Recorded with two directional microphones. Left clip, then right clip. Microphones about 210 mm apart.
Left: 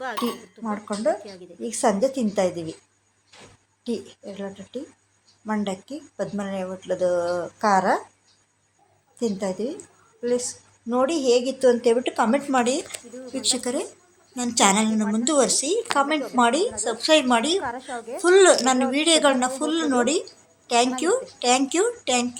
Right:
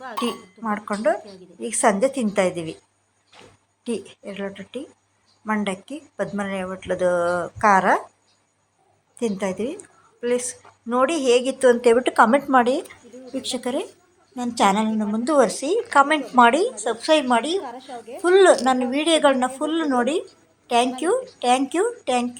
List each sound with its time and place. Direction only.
0.6 s a woman's voice: 15° right (ahead or behind)
3.8 s a woman's voice: 10° right (ahead or behind)
9.1 s a woman's voice: 15° right (ahead or behind)
17.6 s a woman's voice: 10° left (ahead or behind)
18.2 s a woman's voice: 10° right (ahead or behind)